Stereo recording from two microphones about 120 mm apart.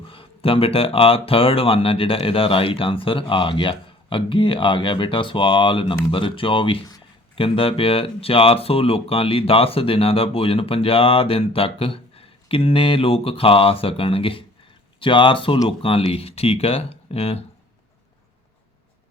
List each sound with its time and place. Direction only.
0.1 s speech: 50° left (ahead or behind)